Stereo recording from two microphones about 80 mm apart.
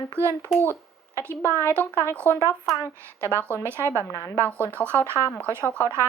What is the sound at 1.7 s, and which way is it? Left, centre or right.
Speech, right.